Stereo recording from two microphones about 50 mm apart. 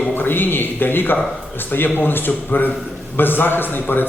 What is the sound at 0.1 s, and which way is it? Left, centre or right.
Speech, left.